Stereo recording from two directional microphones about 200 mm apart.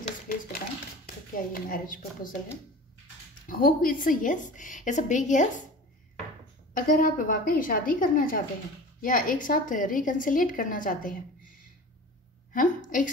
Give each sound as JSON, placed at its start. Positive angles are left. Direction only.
{"t": 1.0, "sound": "speech", "side_deg": 45}
{"t": 3.4, "sound": "a woman's voice", "side_deg": 45}
{"t": 6.7, "sound": "a woman's voice", "side_deg": 45}
{"t": 12.5, "sound": "a woman's voice", "side_deg": 40}